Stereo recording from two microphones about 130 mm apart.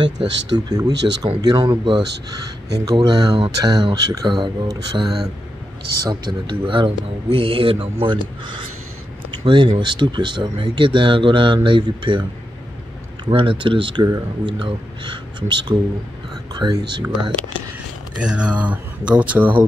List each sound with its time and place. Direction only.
0.5 s speech: 30° right (ahead or behind)
9.3 s a sound: 40° right (ahead or behind)
9.8 s speech: 35° right (ahead or behind)
14.0 s speech: 25° right (ahead or behind)
18.1 s speech: 10° right (ahead or behind)